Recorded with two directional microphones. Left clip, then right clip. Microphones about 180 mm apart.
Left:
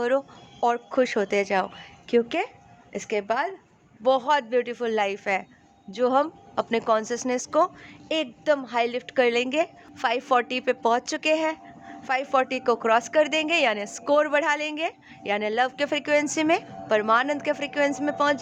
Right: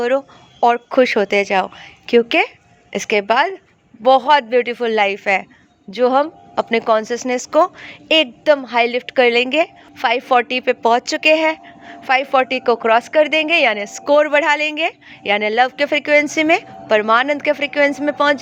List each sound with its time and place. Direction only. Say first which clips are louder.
0.0 s speech: right 7 dB; 15° right (ahead or behind)